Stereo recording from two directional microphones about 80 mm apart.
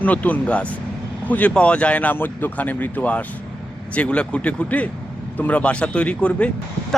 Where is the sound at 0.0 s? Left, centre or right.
Centre.